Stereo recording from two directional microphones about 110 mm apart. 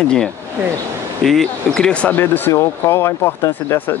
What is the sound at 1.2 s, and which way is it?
Speech, centre (ahead or behind).